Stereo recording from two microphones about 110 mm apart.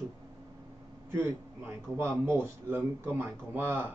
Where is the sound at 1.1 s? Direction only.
25° right (ahead or behind).